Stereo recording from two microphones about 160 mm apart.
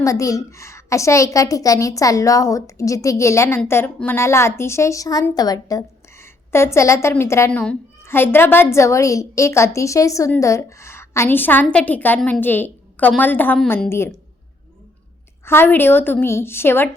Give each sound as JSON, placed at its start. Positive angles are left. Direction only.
{"t": 0.0, "sound": "a woman's voice", "side_deg": 20}
{"t": 15.4, "sound": "a woman's voice", "side_deg": 15}